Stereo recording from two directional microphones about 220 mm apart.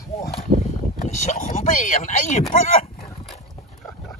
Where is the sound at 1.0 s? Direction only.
35° left (ahead or behind).